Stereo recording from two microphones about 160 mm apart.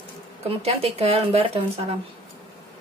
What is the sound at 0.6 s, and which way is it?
Speech, 40° right (ahead or behind).